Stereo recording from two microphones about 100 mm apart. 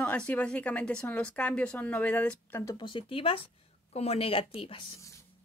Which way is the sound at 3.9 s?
80° left.